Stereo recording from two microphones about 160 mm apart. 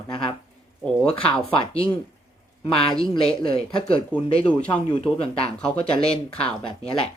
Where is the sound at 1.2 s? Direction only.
35° left (ahead or behind).